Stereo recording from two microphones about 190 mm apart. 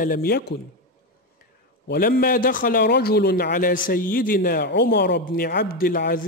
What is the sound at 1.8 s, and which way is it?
A man's voice, 55° left (ahead or behind).